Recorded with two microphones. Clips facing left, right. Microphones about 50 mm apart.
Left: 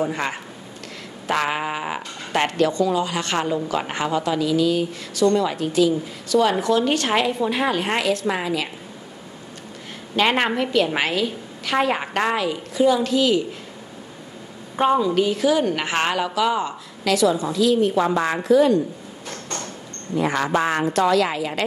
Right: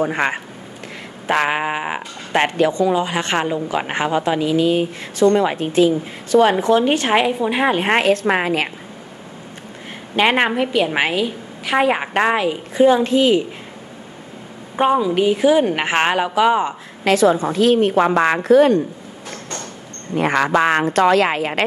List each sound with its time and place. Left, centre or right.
0.0 s a woman's voice: right
7.9 s a woman's voice: right
10.1 s a woman's voice: right
14.8 s speech: centre; by 18.4 s right
18.4 s a woman's voice: right
20.1 s a woman's voice: right
20.5 s speech: right
21.0 s a woman's voice: right